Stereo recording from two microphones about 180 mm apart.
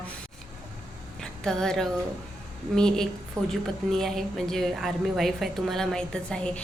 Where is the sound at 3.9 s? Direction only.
Centre (ahead or behind).